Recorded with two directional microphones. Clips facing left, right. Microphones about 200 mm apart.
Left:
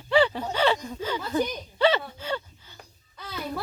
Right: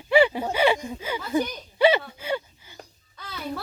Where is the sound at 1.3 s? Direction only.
10° right (ahead or behind).